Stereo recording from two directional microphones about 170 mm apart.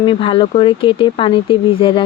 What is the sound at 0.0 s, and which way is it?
Speech, 30° left (ahead or behind).